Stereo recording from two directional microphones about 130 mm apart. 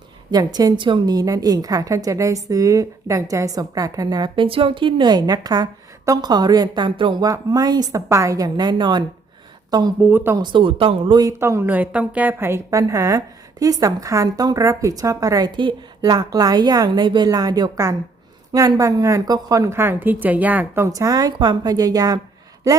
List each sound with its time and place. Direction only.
0.3 s a woman's voice: 30° right (ahead or behind)
10.0 s speech: 15° right (ahead or behind)
10.3 s a woman's voice: 40° right (ahead or behind)
11.2 s a woman's voice: 20° right (ahead or behind)